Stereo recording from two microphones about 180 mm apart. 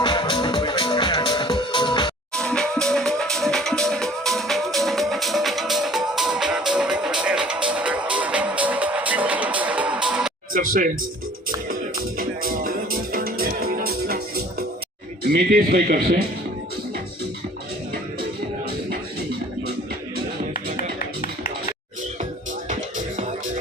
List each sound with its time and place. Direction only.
0.0 s music: 25° left (ahead or behind)
2.3 s music: 5° left (ahead or behind)
10.5 s music: 50° right (ahead or behind)
12.1 s music: 55° right (ahead or behind)
15.2 s speech: 60° right (ahead or behind)
21.0 s music: 50° left (ahead or behind)
22.7 s music: 45° right (ahead or behind)